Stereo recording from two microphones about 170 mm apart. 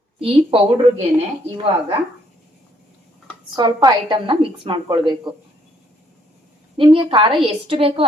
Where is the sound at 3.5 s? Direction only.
25° right (ahead or behind).